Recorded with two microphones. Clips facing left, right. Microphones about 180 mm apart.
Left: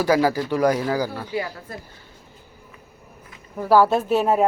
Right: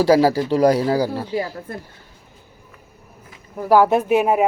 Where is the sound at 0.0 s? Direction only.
30° right (ahead or behind).